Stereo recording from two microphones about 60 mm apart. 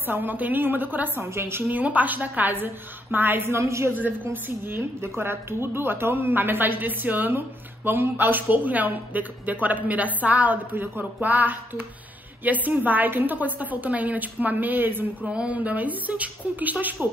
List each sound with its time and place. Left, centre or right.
0.0 s a woman's voice: right
1.7 s a woman's voice: right
4.0 s a woman's voice: right
15.2 s a woman's voice: centre